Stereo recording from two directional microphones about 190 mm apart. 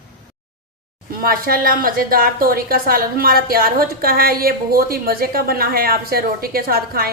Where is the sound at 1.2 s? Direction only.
50° right (ahead or behind).